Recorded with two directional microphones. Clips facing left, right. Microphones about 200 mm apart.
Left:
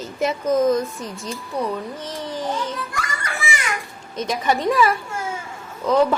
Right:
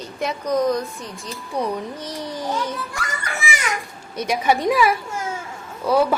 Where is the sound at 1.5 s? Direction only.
15° right (ahead or behind).